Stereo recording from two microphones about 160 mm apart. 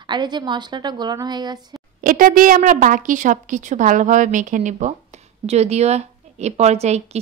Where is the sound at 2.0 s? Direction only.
60° right (ahead or behind).